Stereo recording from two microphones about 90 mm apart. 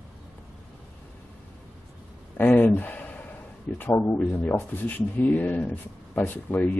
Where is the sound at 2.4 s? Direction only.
20° left (ahead or behind).